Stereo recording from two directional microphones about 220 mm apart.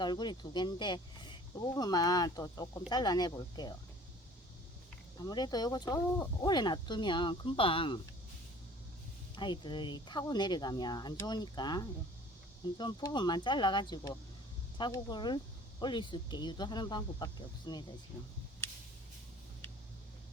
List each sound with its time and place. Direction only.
0.0 s speech: 20° left (ahead or behind)
5.2 s speech: 20° left (ahead or behind)
9.3 s speech: 20° left (ahead or behind)